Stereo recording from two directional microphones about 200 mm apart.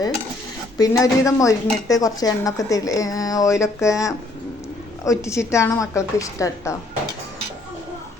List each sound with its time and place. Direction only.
0.8 s speech: 15° left (ahead or behind)